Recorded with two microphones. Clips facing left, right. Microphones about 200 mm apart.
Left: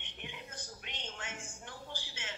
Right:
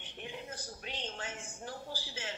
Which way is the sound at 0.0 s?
35° right (ahead or behind).